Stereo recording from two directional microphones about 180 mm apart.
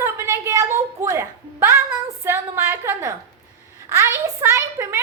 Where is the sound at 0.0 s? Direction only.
15° right (ahead or behind).